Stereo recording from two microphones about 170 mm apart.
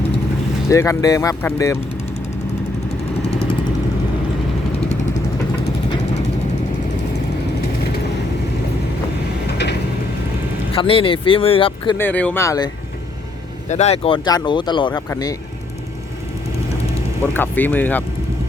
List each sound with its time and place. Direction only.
0.7 s speech: 20° left (ahead or behind)
10.8 s speech: 30° left (ahead or behind)
11.9 s speech: 10° left (ahead or behind)
13.7 s speech: 40° left (ahead or behind)
14.3 s speech: 25° left (ahead or behind)
17.3 s speech: 10° left (ahead or behind)